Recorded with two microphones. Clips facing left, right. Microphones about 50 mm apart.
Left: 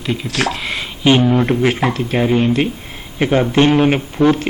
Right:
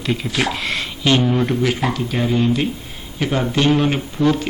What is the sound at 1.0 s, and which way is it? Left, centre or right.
A man's voice, centre.